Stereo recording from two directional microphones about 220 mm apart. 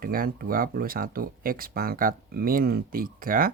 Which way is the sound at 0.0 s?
40° right (ahead or behind).